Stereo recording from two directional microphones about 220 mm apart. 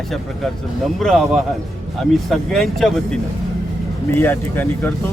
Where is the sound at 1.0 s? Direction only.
Centre (ahead or behind).